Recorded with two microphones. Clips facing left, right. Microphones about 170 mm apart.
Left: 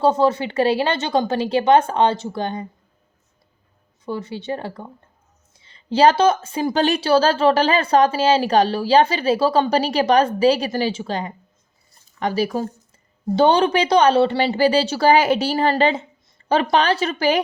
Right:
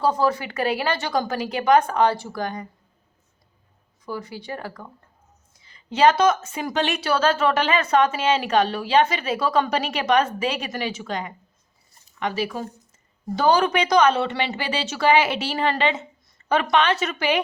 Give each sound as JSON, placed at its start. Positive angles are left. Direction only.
{"t": 0.0, "sound": "a woman's voice", "side_deg": 25}
{"t": 4.0, "sound": "a woman's voice", "side_deg": 25}
{"t": 13.3, "sound": "a woman's voice", "side_deg": 30}